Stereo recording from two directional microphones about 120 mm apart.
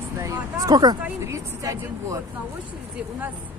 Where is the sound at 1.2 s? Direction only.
25° right (ahead or behind).